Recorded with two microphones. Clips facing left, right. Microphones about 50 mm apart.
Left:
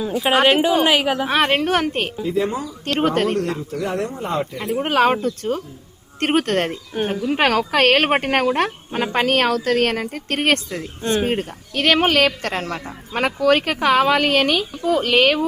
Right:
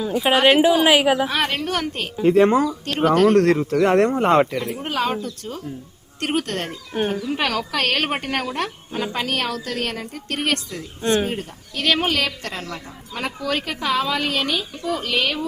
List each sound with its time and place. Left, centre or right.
0.0 s a woman's voice: centre
1.3 s speech: left
2.2 s speech: right
3.2 s speech: right
4.6 s a woman's voice: left
11.0 s a woman's voice: centre
11.3 s a woman's voice: left